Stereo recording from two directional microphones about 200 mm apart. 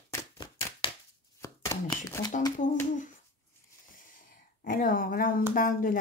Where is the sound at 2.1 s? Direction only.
15° left (ahead or behind).